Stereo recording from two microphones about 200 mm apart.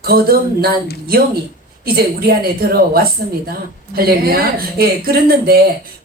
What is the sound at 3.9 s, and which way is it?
Speech, 50° right (ahead or behind).